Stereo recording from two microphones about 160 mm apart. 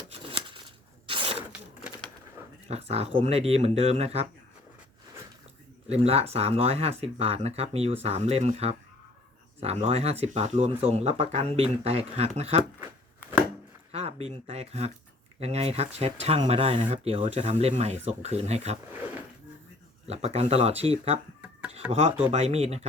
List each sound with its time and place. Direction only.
0.1 s a sound: 35° right (ahead or behind)
2.6 s speech: 40° right (ahead or behind)
5.9 s speech: 40° right (ahead or behind)
13.9 s speech: 40° right (ahead or behind)
20.1 s speech: 40° right (ahead or behind)
21.4 s a sound: 10° right (ahead or behind)
22.3 s speech: 40° right (ahead or behind)